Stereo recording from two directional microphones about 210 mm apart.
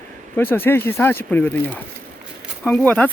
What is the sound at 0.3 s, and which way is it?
Speech, 10° left (ahead or behind).